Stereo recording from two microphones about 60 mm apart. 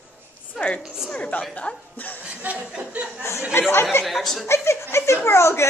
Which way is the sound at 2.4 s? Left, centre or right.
Right.